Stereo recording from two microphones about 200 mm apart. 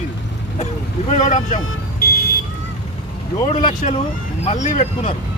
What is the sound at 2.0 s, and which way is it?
Vehicle, 50° left (ahead or behind).